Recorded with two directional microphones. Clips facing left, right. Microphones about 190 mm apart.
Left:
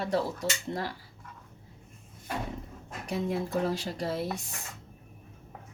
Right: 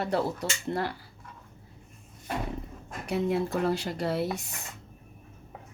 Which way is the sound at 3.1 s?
65° right (ahead or behind).